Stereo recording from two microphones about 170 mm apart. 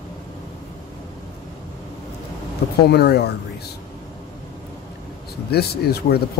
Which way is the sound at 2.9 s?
70° left (ahead or behind).